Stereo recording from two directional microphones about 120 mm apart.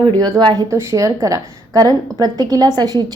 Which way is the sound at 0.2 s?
35° right (ahead or behind).